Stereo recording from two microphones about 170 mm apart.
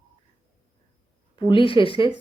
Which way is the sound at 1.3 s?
30° left (ahead or behind).